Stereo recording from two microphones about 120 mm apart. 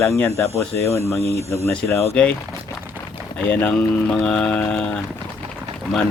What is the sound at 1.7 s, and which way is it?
Speech, 20° left (ahead or behind).